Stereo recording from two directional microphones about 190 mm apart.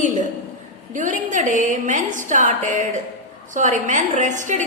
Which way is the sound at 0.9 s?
40° right (ahead or behind).